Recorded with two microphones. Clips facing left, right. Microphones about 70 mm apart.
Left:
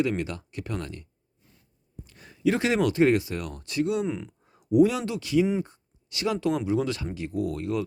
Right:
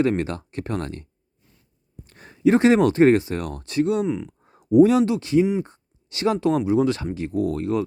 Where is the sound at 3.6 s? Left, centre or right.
Right.